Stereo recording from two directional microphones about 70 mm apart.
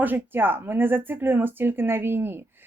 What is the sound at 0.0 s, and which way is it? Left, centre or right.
Speech, right.